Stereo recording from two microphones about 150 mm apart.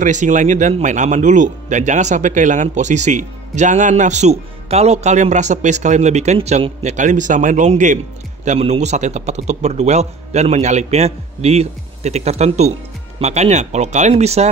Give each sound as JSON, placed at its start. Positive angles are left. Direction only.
{"t": 0.0, "sound": "speech", "side_deg": -55}